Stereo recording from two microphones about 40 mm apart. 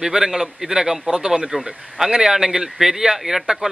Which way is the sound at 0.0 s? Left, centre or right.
Centre.